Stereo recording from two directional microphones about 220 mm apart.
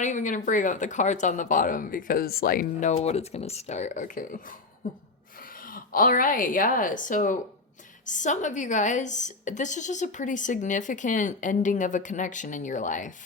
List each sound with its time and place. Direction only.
0.0 s a woman's voice: 35° left (ahead or behind)